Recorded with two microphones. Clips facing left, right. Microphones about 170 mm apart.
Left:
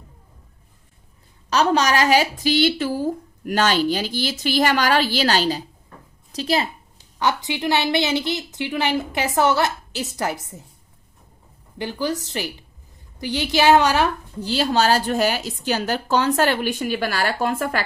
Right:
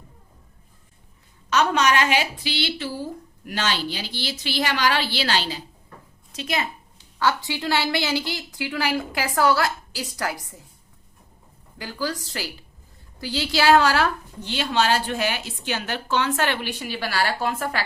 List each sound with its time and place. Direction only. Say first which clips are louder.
1.5 s a woman's voice: left 2 dB; 35° left (ahead or behind)
7.2 s a woman's voice: left 1 dB; 20° left (ahead or behind)
11.8 s a woman's voice: left 4 dB; 20° left (ahead or behind)
14.4 s a woman's voice: left 4 dB; 35° left (ahead or behind)